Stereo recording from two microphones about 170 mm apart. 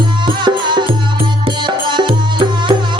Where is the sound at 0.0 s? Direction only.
25° right (ahead or behind).